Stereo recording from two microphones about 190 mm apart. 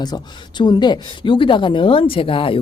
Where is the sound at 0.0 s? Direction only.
20° left (ahead or behind).